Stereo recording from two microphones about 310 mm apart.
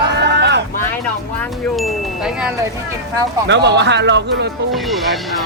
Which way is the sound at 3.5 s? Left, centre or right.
Right.